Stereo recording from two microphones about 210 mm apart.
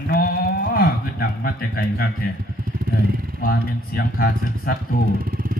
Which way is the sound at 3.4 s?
45° left (ahead or behind).